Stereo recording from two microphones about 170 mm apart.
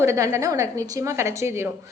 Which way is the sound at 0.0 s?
15° right (ahead or behind).